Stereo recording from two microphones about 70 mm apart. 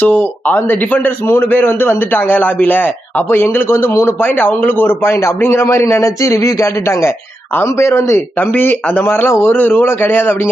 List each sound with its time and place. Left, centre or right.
0.0 s a man's voice: left
8.4 s speech: left